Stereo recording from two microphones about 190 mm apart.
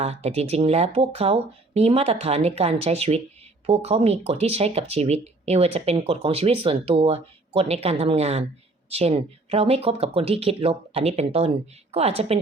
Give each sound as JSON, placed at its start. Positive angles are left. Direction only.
{"t": 0.0, "sound": "speech", "side_deg": -35}